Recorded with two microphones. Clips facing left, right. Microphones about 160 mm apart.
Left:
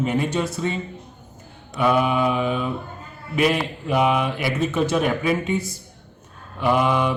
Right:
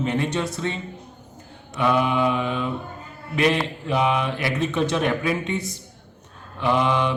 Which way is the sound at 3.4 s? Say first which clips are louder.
Left 1 dB; 5° left (ahead or behind).